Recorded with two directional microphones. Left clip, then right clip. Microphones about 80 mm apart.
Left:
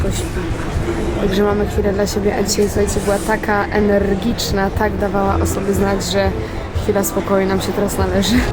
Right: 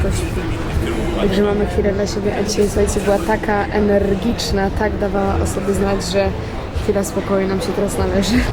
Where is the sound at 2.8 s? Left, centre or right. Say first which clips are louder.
Right 1 dB; centre.